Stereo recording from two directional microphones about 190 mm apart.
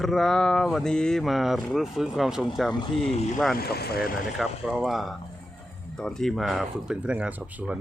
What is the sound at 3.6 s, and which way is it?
Speech, 55° left (ahead or behind).